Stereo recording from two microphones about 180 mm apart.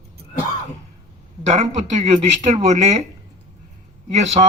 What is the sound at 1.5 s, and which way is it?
A man's voice, 40° right (ahead or behind).